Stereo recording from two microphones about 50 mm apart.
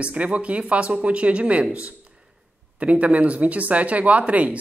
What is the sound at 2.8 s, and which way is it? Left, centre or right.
Speech, right.